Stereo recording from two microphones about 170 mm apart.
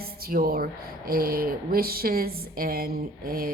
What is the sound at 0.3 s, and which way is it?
A woman's voice, 60° right (ahead or behind).